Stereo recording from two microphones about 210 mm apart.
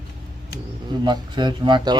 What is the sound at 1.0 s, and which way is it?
Speech, 20° right (ahead or behind).